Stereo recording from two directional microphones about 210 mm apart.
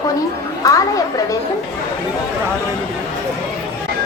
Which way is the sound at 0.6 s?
15° left (ahead or behind).